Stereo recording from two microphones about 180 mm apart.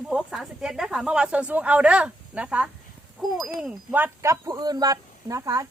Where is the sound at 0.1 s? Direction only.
5° right (ahead or behind).